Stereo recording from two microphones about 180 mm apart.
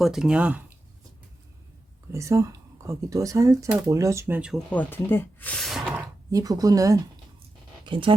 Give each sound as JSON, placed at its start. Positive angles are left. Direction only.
{"t": 0.0, "sound": "speech", "side_deg": 0}
{"t": 2.1, "sound": "speech", "side_deg": -15}
{"t": 4.7, "sound": "speech", "side_deg": 10}
{"t": 6.3, "sound": "speech", "side_deg": -20}